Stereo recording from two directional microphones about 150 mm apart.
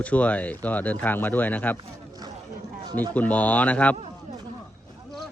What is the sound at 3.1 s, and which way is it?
Speech, 10° left (ahead or behind).